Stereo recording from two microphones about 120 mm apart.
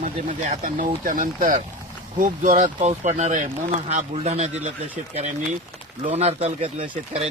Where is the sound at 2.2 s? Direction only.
80° right.